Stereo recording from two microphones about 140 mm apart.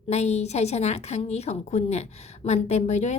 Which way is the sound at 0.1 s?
50° left (ahead or behind).